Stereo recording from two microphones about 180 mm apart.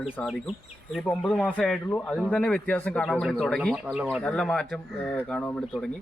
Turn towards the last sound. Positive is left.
turn(degrees=5)  # may be behind; listen again after turning